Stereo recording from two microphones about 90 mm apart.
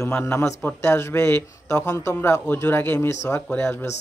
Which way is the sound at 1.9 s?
30° left (ahead or behind).